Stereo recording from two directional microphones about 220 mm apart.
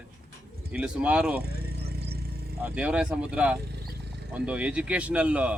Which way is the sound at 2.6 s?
5° right (ahead or behind).